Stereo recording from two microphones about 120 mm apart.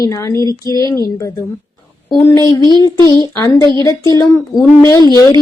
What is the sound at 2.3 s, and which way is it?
A woman's voice, 30° left (ahead or behind).